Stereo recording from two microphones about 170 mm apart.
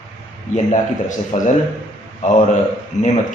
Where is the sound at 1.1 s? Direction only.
45° left (ahead or behind).